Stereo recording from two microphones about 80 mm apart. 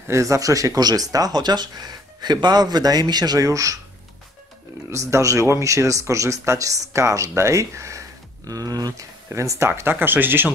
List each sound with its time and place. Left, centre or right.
0.1 s speech: right
4.9 s speech: right
8.5 s speech: right
9.3 s speech: right